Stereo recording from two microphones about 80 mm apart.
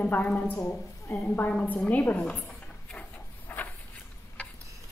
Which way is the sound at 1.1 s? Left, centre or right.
Left.